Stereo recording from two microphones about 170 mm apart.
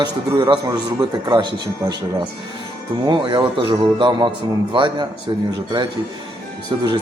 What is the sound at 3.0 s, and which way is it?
Speech, 25° right (ahead or behind).